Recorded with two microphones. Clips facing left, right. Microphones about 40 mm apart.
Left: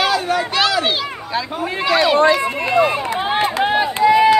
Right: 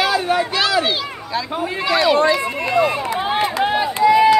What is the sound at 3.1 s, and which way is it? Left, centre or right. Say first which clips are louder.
Run: left 1 dB; left.